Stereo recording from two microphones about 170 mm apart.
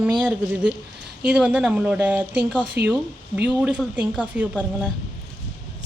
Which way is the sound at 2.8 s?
70° right (ahead or behind).